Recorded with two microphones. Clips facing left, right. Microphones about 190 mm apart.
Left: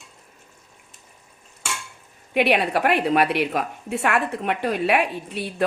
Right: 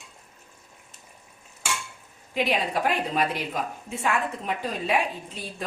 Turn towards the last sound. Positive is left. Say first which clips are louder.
# left 9 dB
turn(degrees=70)  # may be behind; listen again after turning